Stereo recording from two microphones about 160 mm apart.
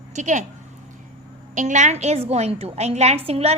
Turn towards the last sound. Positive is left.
turn(degrees=-40)  # may be behind; listen again after turning